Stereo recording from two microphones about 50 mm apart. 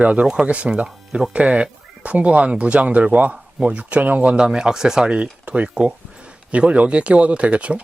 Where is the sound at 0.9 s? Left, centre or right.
Centre.